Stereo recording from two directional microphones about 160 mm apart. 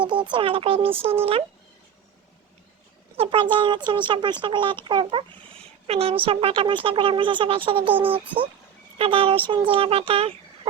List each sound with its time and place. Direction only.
0.0 s speech: 30° right (ahead or behind)
3.2 s speech: 30° right (ahead or behind)
9.0 s speech: 35° right (ahead or behind)